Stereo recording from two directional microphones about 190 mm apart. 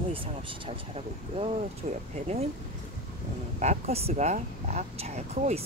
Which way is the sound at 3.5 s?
35° right (ahead or behind).